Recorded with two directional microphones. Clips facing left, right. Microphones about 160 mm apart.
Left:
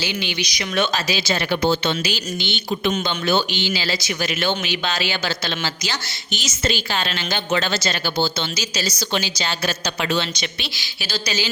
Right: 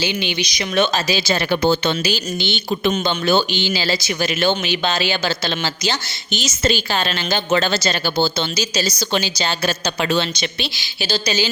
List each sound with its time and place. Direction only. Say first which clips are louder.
0.0 s speech: right 4 dB; 20° right (ahead or behind)
1.2 s speech: right 2 dB; 40° right (ahead or behind)